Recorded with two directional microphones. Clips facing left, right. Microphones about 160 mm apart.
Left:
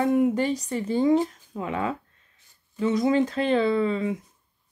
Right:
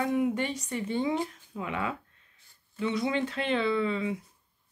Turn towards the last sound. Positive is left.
turn(degrees=40)  # may be behind; listen again after turning